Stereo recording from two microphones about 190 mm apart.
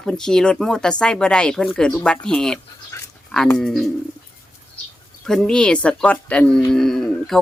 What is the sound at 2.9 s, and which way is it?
Dog, 15° left (ahead or behind).